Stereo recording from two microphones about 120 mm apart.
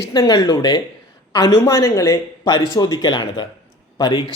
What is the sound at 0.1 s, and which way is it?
A woman's voice, 35° left (ahead or behind).